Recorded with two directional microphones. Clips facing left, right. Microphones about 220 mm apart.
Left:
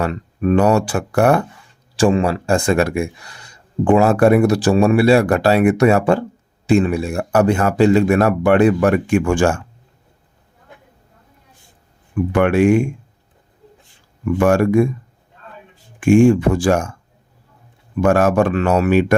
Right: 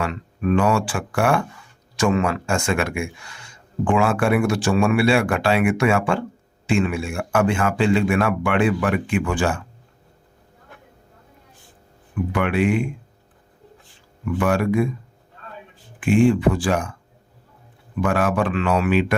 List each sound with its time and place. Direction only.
0.0 s speech: 40° left (ahead or behind)
12.3 s speech: 45° left (ahead or behind)
14.3 s speech: 45° left (ahead or behind)
16.0 s speech: 45° left (ahead or behind)
18.0 s speech: 45° left (ahead or behind)